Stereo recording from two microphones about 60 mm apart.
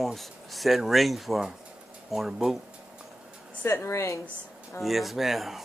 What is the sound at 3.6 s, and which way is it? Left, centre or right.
Speech, left.